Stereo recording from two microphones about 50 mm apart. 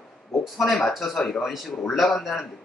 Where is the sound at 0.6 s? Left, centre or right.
Centre.